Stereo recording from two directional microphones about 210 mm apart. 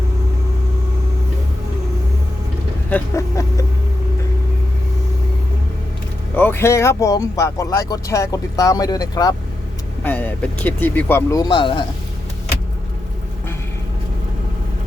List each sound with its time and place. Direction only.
2.9 s speech: 15° left (ahead or behind)
6.3 s speech: 10° left (ahead or behind)